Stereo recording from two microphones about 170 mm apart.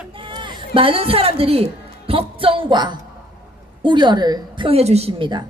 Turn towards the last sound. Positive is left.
turn(degrees=-30)  # may be behind; listen again after turning